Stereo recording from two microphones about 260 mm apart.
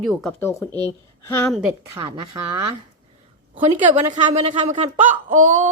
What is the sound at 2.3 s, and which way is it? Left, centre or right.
Speech, centre.